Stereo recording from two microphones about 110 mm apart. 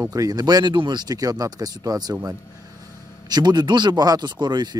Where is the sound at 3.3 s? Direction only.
40° right (ahead or behind).